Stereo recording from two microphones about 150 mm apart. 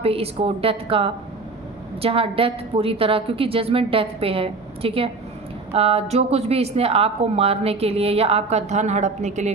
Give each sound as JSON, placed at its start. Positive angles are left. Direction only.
{"t": 0.0, "sound": "a woman's voice", "side_deg": -40}